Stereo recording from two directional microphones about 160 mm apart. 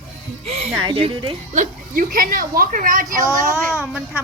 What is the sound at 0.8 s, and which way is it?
Speech, 35° right (ahead or behind).